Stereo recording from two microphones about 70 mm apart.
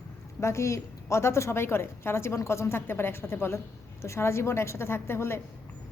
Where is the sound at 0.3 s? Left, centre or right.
Left.